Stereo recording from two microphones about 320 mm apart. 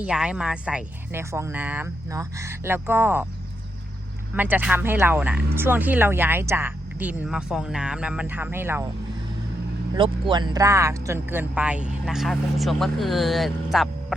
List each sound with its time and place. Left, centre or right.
0.0 s speech: centre
4.4 s speech: centre
9.9 s speech: centre